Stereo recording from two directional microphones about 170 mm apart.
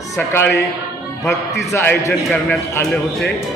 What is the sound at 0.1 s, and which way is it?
A man's voice, 15° left (ahead or behind).